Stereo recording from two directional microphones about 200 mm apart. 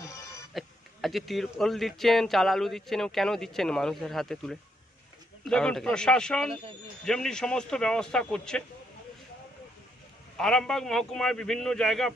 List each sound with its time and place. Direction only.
0.0 s a sound: 15° left (ahead or behind)
0.6 s speech: centre (ahead or behind)
10.3 s speech: 5° left (ahead or behind)